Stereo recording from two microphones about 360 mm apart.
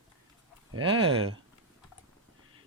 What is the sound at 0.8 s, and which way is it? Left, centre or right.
Speech, centre.